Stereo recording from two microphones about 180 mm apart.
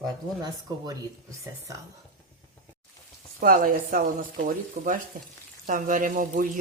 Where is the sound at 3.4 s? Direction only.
50° right (ahead or behind).